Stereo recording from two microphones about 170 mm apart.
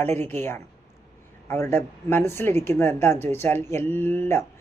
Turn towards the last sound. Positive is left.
turn(degrees=15)  # may be behind; listen again after turning